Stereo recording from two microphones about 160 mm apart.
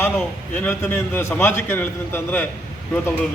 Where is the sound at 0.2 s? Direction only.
10° left (ahead or behind).